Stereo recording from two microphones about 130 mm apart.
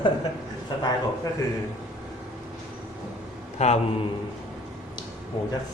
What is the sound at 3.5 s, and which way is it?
Speech, 60° left (ahead or behind).